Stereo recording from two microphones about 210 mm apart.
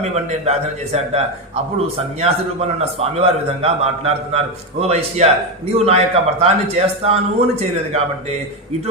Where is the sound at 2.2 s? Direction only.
30° right (ahead or behind).